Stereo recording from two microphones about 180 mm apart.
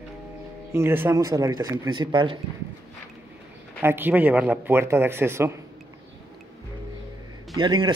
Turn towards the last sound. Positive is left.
turn(degrees=-25)  # may be behind; listen again after turning